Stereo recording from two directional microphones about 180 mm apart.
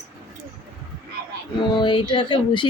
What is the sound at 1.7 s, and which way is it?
Speech, 30° left (ahead or behind).